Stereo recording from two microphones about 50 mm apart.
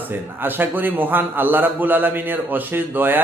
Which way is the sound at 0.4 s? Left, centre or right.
Right.